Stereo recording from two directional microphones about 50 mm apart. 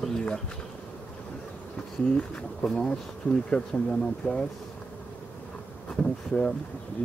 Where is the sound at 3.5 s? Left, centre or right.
Centre.